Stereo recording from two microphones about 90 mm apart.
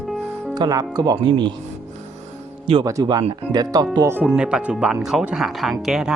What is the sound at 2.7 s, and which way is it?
Speech, 90° right.